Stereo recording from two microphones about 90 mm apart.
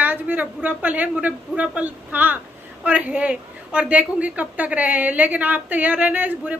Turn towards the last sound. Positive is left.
turn(degrees=-15)  # may be behind; listen again after turning